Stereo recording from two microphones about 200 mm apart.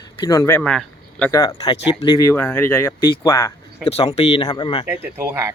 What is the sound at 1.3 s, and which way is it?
Speech, 20° left (ahead or behind).